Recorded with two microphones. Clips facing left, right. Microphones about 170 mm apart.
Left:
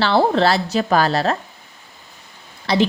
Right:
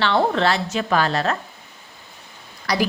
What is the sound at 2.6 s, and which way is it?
Speech, 25° left (ahead or behind).